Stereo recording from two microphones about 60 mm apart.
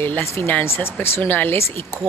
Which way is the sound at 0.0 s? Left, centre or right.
Left.